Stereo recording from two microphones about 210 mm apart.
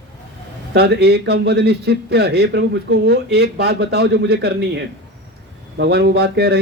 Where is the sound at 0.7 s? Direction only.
50° right (ahead or behind).